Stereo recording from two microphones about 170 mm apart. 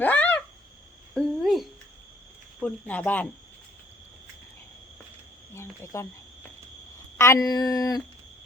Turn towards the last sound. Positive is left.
turn(degrees=20)  # may be behind; listen again after turning